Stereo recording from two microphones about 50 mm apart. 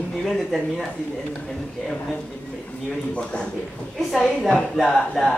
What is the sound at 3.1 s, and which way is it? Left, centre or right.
Speech, left.